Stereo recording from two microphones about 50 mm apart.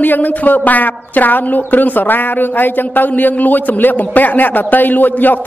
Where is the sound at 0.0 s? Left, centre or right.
Left.